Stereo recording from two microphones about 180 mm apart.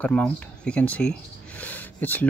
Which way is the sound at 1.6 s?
10° left (ahead or behind).